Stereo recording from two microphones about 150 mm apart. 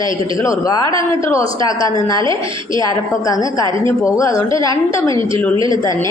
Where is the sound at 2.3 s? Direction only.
35° right (ahead or behind).